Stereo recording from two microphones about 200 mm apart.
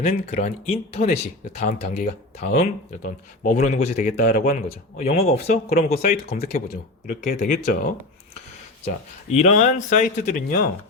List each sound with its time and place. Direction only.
0.0 s speech: 40° left (ahead or behind)
8.8 s speech: 35° left (ahead or behind)